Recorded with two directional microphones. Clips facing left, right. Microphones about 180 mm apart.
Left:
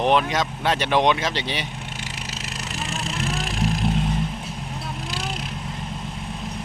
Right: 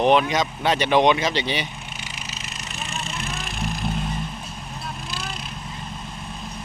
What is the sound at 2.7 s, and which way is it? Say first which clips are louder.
Music: left 3 dB; 85° left.